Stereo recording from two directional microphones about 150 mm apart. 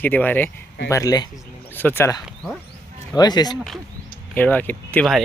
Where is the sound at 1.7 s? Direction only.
15° left (ahead or behind).